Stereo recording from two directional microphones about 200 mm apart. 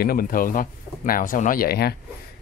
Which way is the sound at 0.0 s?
50° left (ahead or behind).